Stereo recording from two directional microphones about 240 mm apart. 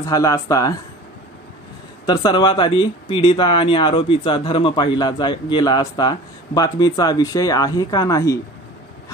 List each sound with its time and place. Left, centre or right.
0.0 s speech: centre
2.0 s speech: centre